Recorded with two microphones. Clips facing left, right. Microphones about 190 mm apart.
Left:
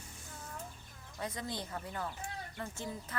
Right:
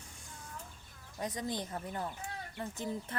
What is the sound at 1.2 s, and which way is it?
A woman's voice, 15° right (ahead or behind).